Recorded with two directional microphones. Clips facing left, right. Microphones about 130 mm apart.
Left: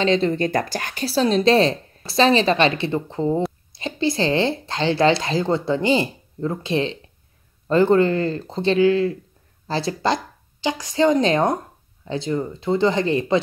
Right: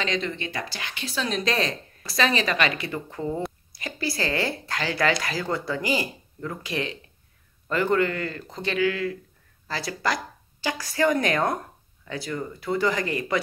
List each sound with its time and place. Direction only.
0.0 s a woman's voice: 30° left (ahead or behind)